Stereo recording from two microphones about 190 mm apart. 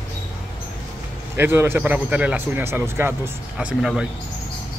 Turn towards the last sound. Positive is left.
turn(degrees=-5)  # may be behind; listen again after turning